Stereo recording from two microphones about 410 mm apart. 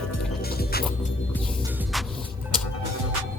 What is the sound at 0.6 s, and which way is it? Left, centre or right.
Music, left.